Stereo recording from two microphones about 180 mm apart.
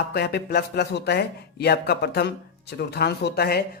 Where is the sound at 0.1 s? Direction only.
60° left (ahead or behind).